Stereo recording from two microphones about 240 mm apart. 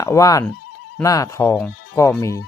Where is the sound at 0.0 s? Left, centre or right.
Centre.